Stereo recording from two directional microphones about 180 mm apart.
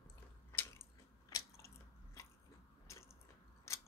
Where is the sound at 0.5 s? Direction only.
15° left (ahead or behind).